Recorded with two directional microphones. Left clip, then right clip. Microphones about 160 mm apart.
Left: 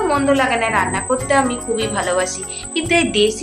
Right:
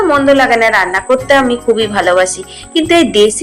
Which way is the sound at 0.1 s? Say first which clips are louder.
Right 8 dB; 40° right (ahead or behind).